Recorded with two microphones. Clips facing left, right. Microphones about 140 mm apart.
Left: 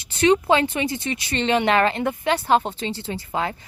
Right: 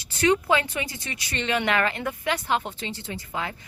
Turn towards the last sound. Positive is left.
turn(degrees=35)  # may be behind; listen again after turning